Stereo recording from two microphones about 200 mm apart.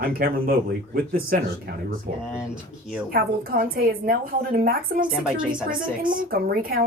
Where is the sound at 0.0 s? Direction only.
45° right (ahead or behind).